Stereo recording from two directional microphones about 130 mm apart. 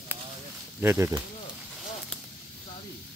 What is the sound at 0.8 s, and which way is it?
Speech, 20° right (ahead or behind).